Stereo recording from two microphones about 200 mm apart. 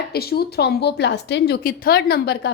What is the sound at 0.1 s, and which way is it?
A woman's voice, 50° left (ahead or behind).